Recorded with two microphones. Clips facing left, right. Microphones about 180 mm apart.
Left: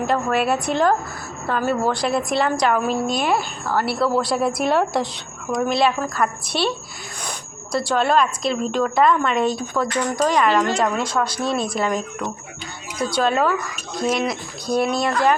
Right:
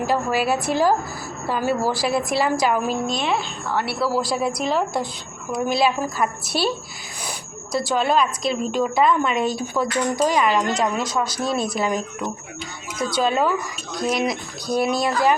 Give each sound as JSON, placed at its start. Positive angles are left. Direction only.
{"t": 0.0, "sound": "a woman's voice", "side_deg": -5}
{"t": 4.6, "sound": "speech", "side_deg": 65}
{"t": 5.5, "sound": "a woman's voice", "side_deg": -5}